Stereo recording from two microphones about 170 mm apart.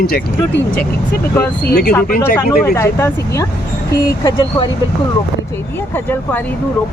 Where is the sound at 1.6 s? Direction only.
65° left (ahead or behind).